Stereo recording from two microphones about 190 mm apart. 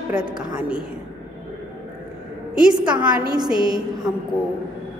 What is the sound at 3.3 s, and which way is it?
Speech, 20° right (ahead or behind).